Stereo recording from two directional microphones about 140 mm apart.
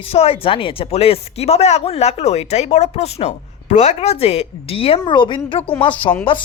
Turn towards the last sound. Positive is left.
turn(degrees=35)  # may be behind; listen again after turning